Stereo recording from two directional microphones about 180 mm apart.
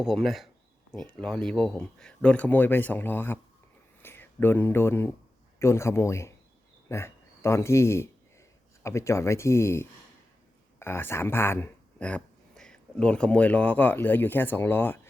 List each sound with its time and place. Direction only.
0.0 s speech: centre (ahead or behind)